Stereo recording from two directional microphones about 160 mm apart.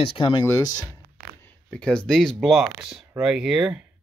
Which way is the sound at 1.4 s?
5° left (ahead or behind).